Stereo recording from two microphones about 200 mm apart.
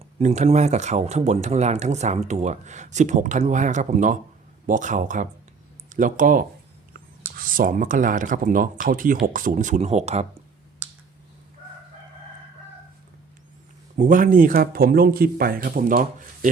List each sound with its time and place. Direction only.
0.2 s speech: 35° right (ahead or behind)
13.9 s speech: 40° right (ahead or behind)